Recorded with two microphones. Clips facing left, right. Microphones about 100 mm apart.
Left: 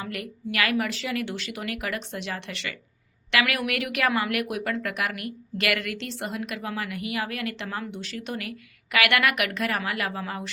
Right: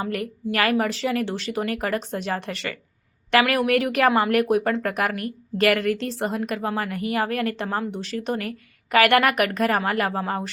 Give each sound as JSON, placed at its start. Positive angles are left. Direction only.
{"t": 0.0, "sound": "speech", "side_deg": -40}